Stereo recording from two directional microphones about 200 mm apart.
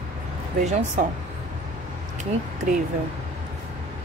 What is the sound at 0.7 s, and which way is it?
Speech, 35° right (ahead or behind).